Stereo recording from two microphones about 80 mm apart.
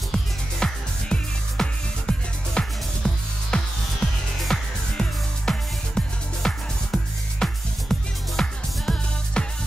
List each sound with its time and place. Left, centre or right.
0.1 s music: centre